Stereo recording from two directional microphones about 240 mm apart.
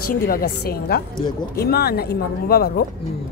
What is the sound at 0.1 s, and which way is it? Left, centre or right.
Music, left.